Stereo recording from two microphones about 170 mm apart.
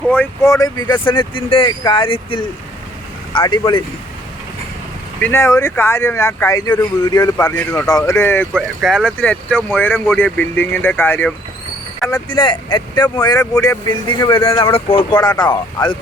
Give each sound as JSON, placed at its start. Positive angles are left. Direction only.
{"t": 0.0, "sound": "speech", "side_deg": 10}
{"t": 5.2, "sound": "speech", "side_deg": 15}
{"t": 8.5, "sound": "speech", "side_deg": 0}
{"t": 12.0, "sound": "speech", "side_deg": 25}